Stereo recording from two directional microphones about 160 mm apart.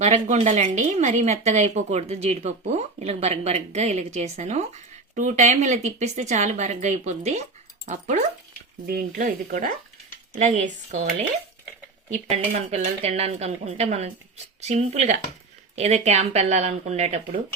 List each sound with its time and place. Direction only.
0.0 s speech: 45° right (ahead or behind)
8.9 s speech: 65° right (ahead or behind); by 17.2 s 45° right (ahead or behind)